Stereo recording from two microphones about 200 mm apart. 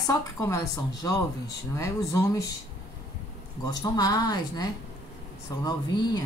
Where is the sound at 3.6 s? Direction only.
20° left (ahead or behind).